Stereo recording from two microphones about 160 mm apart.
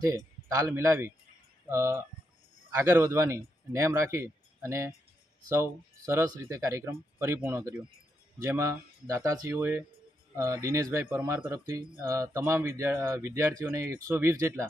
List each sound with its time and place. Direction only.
0.1 s a man's voice: 20° right (ahead or behind)